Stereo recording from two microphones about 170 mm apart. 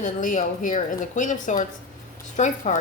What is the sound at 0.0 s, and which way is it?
A woman's voice, 50° left (ahead or behind).